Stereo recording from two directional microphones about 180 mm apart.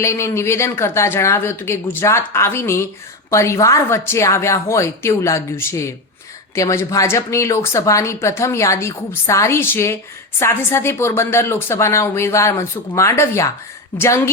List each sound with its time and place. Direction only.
0.0 s speech: 15° left (ahead or behind)